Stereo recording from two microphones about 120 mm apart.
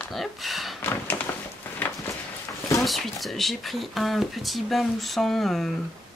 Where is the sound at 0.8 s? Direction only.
15° left (ahead or behind).